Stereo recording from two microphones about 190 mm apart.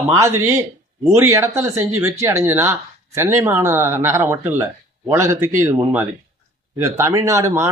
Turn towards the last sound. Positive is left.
turn(degrees=-15)  # may be behind; listen again after turning